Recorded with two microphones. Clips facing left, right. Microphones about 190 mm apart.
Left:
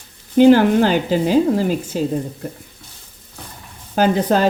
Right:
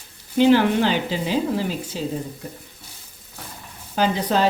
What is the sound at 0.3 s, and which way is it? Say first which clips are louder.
Speech: left 5 dB; 45° left (ahead or behind).